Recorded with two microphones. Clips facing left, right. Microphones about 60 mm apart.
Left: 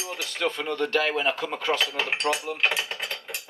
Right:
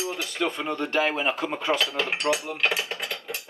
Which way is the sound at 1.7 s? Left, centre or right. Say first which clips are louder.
Even; left.